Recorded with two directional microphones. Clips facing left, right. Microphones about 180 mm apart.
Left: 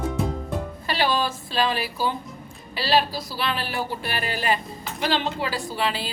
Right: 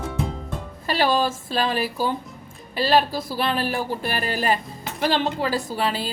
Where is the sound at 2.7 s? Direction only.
50° right (ahead or behind).